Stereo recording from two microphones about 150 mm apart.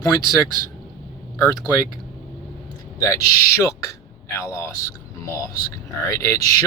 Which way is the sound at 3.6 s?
20° left (ahead or behind).